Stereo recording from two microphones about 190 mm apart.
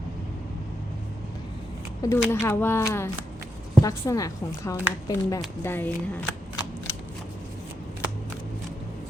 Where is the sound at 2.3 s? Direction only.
10° left (ahead or behind).